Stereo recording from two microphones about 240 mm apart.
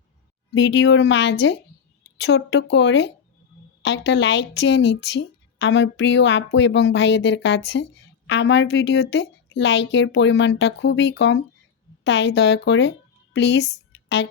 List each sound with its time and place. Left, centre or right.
0.5 s a woman's voice: left